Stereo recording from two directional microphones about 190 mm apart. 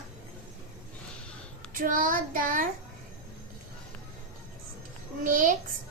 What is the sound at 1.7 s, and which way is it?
Child singing, 45° right (ahead or behind).